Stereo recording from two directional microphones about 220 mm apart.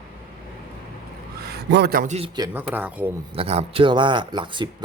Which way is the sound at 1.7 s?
45° right (ahead or behind).